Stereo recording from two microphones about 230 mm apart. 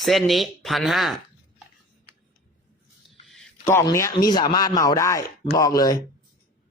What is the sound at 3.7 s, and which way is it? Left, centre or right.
Speech, centre.